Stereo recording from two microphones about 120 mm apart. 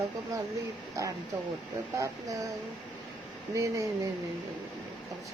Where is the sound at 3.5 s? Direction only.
30° right (ahead or behind).